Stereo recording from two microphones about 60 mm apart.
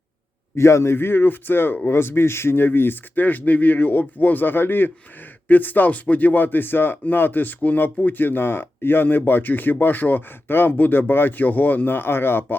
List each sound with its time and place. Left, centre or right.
0.5 s speech: left